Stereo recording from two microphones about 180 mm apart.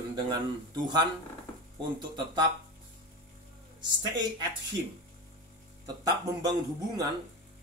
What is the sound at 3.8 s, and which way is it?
Speech, 25° right (ahead or behind).